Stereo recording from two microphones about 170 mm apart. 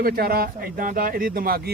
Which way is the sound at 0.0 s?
60° right (ahead or behind).